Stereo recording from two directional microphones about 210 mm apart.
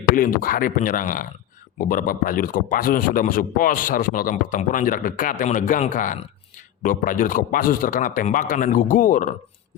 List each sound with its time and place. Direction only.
0.2 s speech: 40° left (ahead or behind)